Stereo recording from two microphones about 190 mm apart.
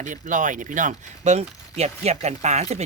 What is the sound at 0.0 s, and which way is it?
Speech, 40° right (ahead or behind).